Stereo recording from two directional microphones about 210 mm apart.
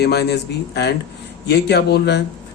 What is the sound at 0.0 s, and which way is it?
Speech, 50° left (ahead or behind).